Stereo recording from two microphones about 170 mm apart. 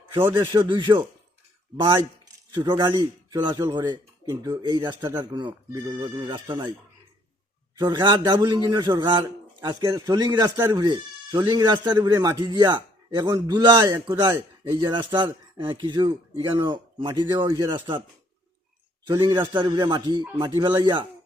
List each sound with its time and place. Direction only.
0.3 s speech: 30° right (ahead or behind)
7.8 s speech: 25° right (ahead or behind)
19.2 s speech: 30° right (ahead or behind)